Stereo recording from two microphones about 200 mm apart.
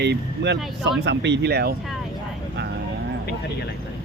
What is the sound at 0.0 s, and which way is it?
Speech, 55° right (ahead or behind).